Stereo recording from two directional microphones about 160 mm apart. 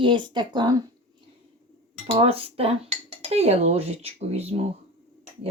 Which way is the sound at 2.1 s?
35° right (ahead or behind).